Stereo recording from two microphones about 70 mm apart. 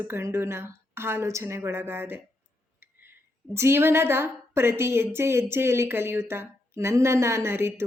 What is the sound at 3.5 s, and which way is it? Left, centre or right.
A woman's voice, right.